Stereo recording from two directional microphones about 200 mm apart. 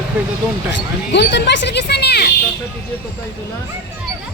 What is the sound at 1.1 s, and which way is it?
Speech, 60° left (ahead or behind).